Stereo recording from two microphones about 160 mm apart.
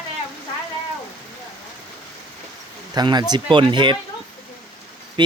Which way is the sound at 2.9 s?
25° right (ahead or behind).